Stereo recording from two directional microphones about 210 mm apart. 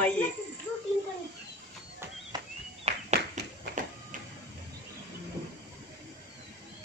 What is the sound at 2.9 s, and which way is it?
Clapping, 30° right (ahead or behind).